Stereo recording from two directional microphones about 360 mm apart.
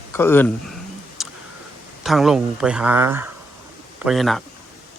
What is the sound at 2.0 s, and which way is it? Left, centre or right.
Speech, centre.